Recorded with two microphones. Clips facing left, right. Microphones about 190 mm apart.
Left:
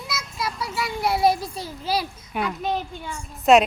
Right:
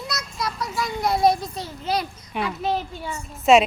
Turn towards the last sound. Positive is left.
turn(degrees=0)  # may be behind; listen again after turning